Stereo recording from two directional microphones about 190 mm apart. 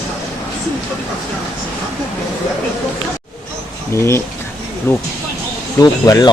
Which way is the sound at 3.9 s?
15° left (ahead or behind).